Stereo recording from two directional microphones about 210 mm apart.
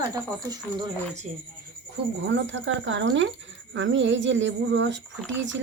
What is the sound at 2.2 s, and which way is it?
Speech, 60° right (ahead or behind).